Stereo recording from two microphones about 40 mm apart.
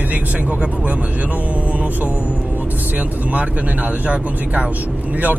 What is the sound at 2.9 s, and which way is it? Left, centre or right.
Speech, right.